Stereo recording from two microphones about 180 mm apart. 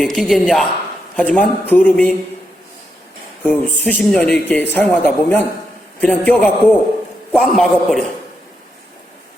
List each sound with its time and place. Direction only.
0.0 s a woman's voice: centre (ahead or behind)
3.4 s a woman's voice: 10° left (ahead or behind)